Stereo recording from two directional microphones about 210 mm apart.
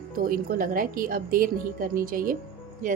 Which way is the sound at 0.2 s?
45° right (ahead or behind).